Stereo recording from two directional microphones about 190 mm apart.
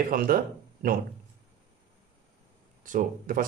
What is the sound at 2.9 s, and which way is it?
Speech, 45° right (ahead or behind).